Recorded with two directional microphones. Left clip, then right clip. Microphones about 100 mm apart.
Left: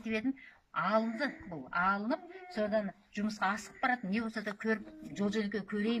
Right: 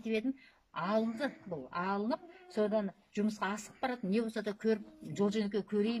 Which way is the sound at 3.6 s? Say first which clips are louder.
Left 5 dB; 35° right (ahead or behind).